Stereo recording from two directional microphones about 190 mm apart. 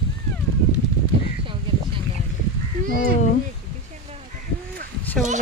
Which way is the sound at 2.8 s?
50° right (ahead or behind).